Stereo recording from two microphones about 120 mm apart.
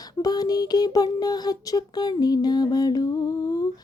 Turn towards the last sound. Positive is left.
turn(degrees=30)  # may be behind; listen again after turning